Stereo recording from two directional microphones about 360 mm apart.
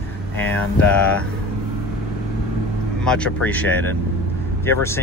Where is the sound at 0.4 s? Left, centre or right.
Centre.